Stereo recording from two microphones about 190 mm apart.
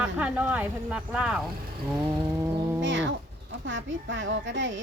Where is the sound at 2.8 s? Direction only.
75° right (ahead or behind).